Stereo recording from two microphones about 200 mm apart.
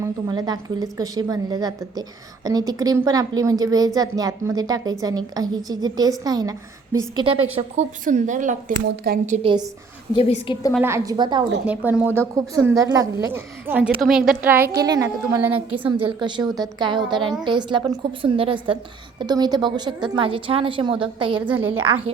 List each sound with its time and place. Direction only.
0.0 s a woman's voice: 20° right (ahead or behind)
8.0 s a woman's voice: 40° right (ahead or behind)
10.2 s a woman's voice: 25° left (ahead or behind)
10.8 s a woman's voice: 15° right (ahead or behind)
11.6 s a woman's voice: 5° right (ahead or behind)
15.8 s a woman's voice: 25° right (ahead or behind)